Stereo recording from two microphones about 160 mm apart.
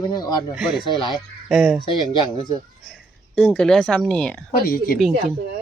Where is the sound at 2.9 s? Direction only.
Centre (ahead or behind).